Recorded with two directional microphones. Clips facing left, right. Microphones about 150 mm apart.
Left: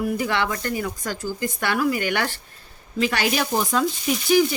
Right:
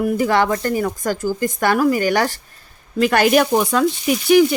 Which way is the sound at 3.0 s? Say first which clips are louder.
Right 8 dB; 50° right (ahead or behind).